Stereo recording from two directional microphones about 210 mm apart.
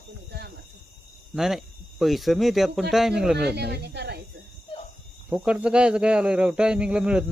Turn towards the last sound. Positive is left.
turn(degrees=-5)  # may be behind; listen again after turning